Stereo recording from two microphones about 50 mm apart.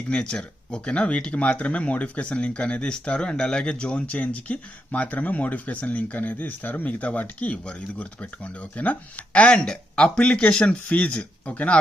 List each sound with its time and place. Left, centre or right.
0.1 s speech: centre